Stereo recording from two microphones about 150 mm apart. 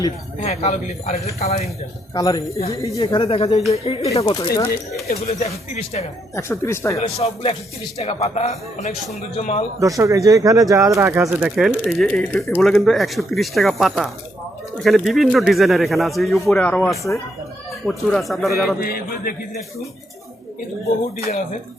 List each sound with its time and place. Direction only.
0.4 s speech: 45° left (ahead or behind)
2.1 s speech: 25° left (ahead or behind)
3.1 s speech: 40° left (ahead or behind)
4.3 s speech: 25° left (ahead or behind)
5.3 s speech: 45° left (ahead or behind)
6.3 s speech: 20° left (ahead or behind)
7.2 s speech: 40° left (ahead or behind)
9.8 s speech: 20° right (ahead or behind)
11.1 s speech: 10° right (ahead or behind)
18.8 s a man's voice: 85° left